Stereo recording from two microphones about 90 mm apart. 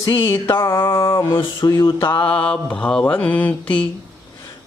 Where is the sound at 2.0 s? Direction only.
20° left (ahead or behind).